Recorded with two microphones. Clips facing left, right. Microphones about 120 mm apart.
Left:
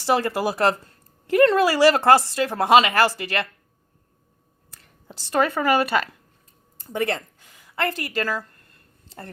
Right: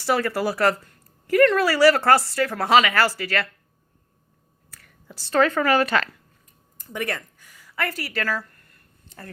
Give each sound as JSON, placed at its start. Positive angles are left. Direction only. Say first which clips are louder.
{"t": 0.0, "sound": "speech", "louder": "left 1 dB", "side_deg": 20}
{"t": 5.1, "sound": "a woman's voice", "louder": "right 2 dB", "side_deg": 15}
{"t": 6.7, "sound": "a sound", "louder": "left 4 dB", "side_deg": 30}